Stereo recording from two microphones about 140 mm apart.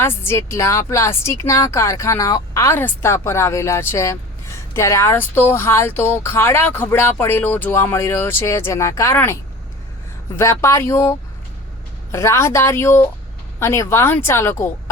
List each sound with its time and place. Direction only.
0.0 s a woman's voice: 15° left (ahead or behind)
12.1 s a woman's voice: 20° left (ahead or behind)